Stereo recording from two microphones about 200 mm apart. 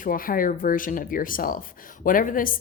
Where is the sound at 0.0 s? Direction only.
45° left (ahead or behind).